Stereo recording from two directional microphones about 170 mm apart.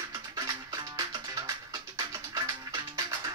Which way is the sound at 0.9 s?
20° right (ahead or behind).